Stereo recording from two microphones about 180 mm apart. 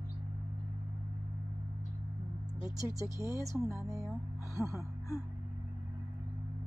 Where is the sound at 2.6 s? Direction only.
15° right (ahead or behind).